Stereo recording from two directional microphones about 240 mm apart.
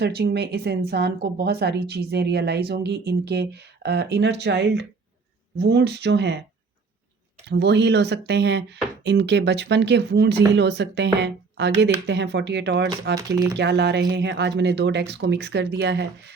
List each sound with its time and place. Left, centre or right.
0.0 s speech: right
7.4 s speech: right
13.1 s speech: centre
13.6 s speech: right